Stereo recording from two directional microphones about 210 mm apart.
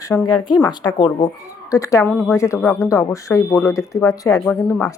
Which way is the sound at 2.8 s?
15° left (ahead or behind).